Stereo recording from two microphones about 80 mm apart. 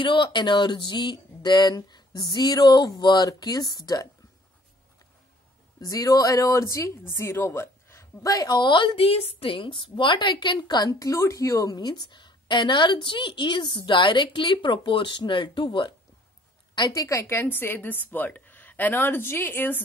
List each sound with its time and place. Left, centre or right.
0.0 s speech: left
5.8 s speech: left
8.3 s a woman's voice: left
9.5 s a woman's voice: left
16.9 s a woman's voice: left